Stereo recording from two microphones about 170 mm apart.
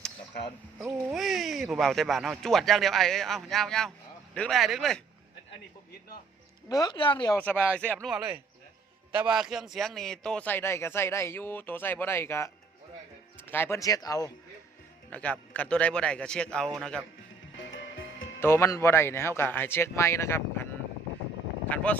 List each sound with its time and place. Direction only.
0.9 s speech: centre (ahead or behind)
6.7 s speech: 20° left (ahead or behind)
7.3 s a man's voice: 10° left (ahead or behind)
8.0 s a man's voice: centre (ahead or behind); by 14.3 s 20° left (ahead or behind)
15.1 s speech: 10° left (ahead or behind)
18.3 s a man's voice: 15° left (ahead or behind)
21.7 s a man's voice: 10° left (ahead or behind)